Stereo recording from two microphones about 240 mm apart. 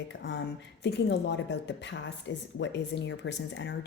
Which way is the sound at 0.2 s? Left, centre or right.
Left.